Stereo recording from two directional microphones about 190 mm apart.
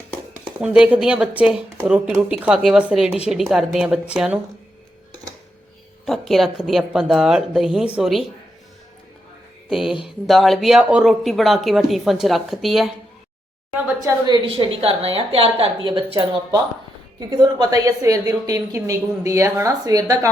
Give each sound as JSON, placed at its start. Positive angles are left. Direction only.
{"t": 0.6, "sound": "speech", "side_deg": -5}
{"t": 6.1, "sound": "speech", "side_deg": 0}
{"t": 9.6, "sound": "speech", "side_deg": 0}
{"t": 13.8, "sound": "a woman's voice", "side_deg": -15}